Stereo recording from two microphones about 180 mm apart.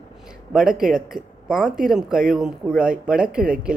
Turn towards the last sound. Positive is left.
turn(degrees=-5)  # may be behind; listen again after turning